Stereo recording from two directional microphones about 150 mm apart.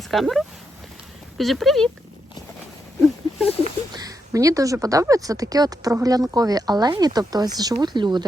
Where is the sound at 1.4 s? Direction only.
Centre (ahead or behind).